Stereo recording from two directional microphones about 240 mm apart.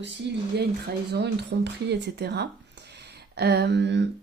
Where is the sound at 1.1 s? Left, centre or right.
Right.